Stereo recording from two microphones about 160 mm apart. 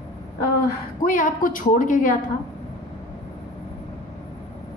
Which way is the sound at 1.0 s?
55° left (ahead or behind).